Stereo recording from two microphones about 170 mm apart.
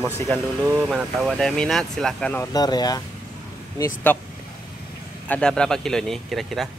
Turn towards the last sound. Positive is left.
turn(degrees=0)  # may be behind; listen again after turning